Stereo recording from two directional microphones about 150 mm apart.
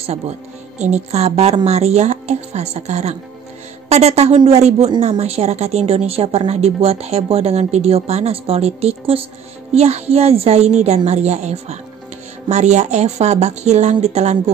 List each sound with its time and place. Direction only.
0.7 s speech: 50° right (ahead or behind)